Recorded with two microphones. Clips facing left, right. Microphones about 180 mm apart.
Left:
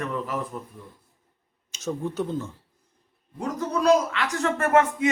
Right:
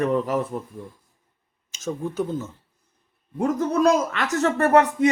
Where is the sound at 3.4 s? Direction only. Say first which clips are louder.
Right 6 dB; 50° right (ahead or behind).